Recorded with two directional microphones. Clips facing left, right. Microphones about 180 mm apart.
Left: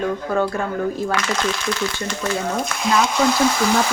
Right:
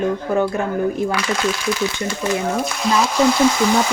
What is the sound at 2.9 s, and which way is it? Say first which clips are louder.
Speech: even; centre (ahead or behind).